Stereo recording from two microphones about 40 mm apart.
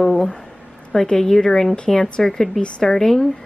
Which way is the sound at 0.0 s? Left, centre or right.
Centre.